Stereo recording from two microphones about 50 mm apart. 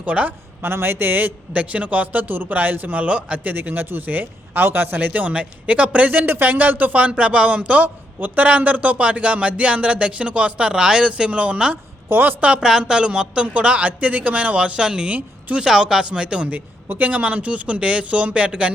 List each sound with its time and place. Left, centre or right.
0.0 s speech: right
0.6 s speech: right
1.7 s speech: right
3.4 s speech: right
12.0 s speech: right
12.5 s speech: centre
15.1 s speech: right
15.6 s speech: centre
16.5 s speech: right